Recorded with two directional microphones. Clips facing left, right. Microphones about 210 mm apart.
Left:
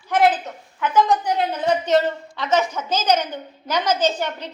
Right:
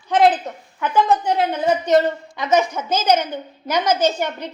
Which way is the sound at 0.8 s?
10° right (ahead or behind).